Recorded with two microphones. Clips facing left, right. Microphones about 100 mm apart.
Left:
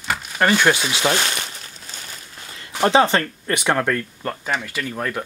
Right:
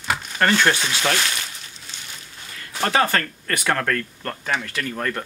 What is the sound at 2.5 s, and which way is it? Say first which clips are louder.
Speech: left 5 dB; 25° left (ahead or behind).